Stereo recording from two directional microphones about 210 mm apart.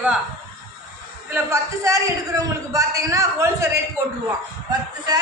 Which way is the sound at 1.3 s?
15° right (ahead or behind).